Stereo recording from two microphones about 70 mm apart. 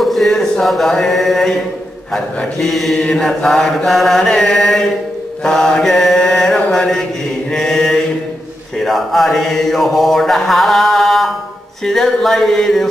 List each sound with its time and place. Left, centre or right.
0.0 s a sound: centre
2.1 s mantra: centre
3.0 s chant: centre
8.7 s mantra: centre